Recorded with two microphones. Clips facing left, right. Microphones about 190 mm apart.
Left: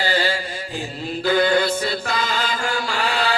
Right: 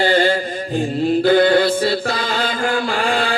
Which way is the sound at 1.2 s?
50° right (ahead or behind).